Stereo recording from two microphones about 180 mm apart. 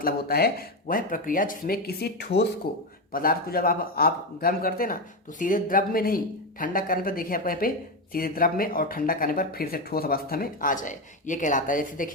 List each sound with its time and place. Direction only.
0.0 s speech: 60° left (ahead or behind)
3.1 s speech: 55° left (ahead or behind)